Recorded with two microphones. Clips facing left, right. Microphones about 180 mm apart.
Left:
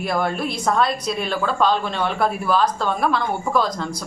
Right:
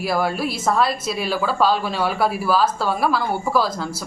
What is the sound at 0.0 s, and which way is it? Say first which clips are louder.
A woman's voice: right 1 dB; 5° right (ahead or behind).